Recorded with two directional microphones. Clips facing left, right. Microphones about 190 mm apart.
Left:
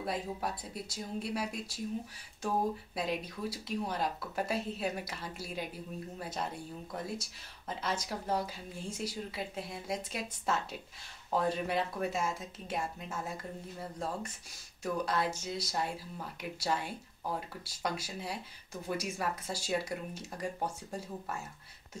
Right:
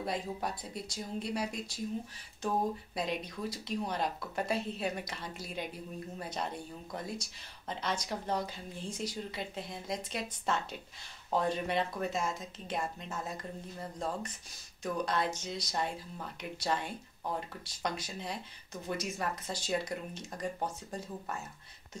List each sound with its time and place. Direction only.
0.0 s speech: 5° left (ahead or behind)
3.0 s speech: 5° left (ahead or behind)